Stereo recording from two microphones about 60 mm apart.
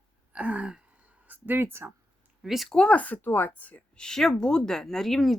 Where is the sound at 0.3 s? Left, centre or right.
Right.